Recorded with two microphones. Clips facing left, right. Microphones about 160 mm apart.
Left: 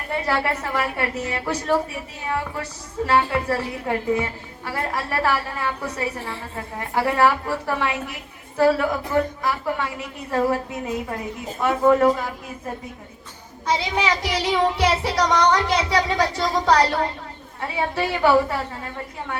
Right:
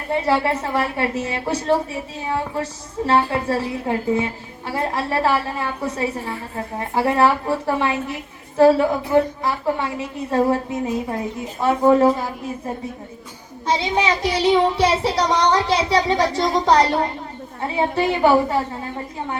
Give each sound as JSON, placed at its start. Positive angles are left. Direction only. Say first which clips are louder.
{"t": 0.3, "sound": "a child's voice", "louder": "right 4 dB", "side_deg": -25}
{"t": 13.7, "sound": "a child's voice", "louder": "right 2 dB", "side_deg": -25}